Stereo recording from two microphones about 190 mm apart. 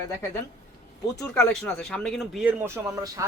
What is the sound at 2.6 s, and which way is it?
Speech, 15° right (ahead or behind).